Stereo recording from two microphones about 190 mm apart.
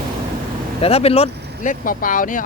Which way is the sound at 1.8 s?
45° left (ahead or behind).